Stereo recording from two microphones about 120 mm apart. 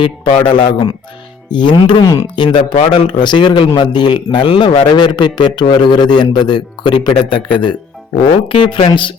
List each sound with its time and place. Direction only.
0.0 s a man's voice: 45° left (ahead or behind)